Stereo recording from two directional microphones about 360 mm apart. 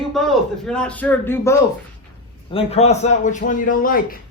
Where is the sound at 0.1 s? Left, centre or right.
Centre.